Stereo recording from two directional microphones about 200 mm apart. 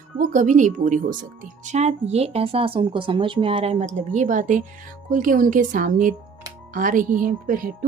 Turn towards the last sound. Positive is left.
turn(degrees=-45)  # may be behind; listen again after turning